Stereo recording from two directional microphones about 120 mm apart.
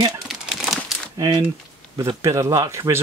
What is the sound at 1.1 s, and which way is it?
Speech, 35° right (ahead or behind).